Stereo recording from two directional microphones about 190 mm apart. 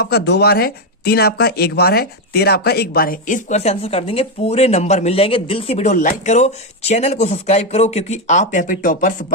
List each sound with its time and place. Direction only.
0.0 s speech: 60° left (ahead or behind); by 9.1 s 45° left (ahead or behind)